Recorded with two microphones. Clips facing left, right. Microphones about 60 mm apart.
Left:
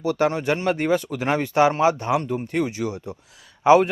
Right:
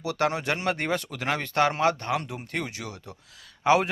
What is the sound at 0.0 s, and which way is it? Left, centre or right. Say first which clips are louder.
Speech: left 5 dB; centre.